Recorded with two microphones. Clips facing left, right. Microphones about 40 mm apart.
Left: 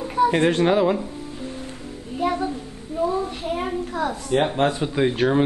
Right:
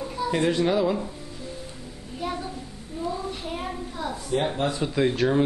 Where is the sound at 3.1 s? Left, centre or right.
Left.